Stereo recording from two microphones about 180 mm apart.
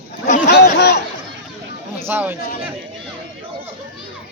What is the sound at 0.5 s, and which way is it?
Chatter, 65° left (ahead or behind).